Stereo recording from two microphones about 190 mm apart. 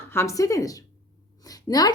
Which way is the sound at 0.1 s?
15° left (ahead or behind).